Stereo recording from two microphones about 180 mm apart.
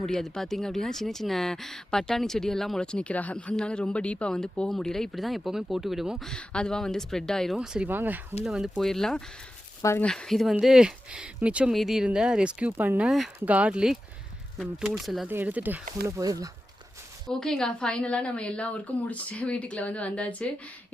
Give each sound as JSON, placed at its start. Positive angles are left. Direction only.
{"t": 0.0, "sound": "speech", "side_deg": 5}
{"t": 9.8, "sound": "a woman's voice", "side_deg": 15}
{"t": 10.1, "sound": "speech", "side_deg": 5}
{"t": 17.2, "sound": "a woman's voice", "side_deg": 0}